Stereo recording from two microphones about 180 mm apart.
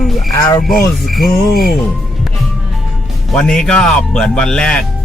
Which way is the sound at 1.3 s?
55° left (ahead or behind).